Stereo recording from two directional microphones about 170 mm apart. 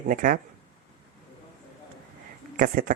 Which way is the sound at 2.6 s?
55° right (ahead or behind).